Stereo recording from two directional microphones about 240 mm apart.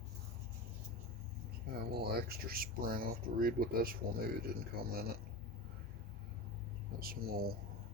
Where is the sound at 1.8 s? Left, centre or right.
Right.